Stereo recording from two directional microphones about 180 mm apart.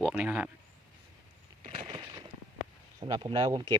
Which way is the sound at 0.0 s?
5° right (ahead or behind).